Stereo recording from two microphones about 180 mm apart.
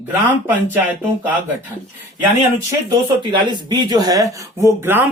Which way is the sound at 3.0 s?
25° right (ahead or behind).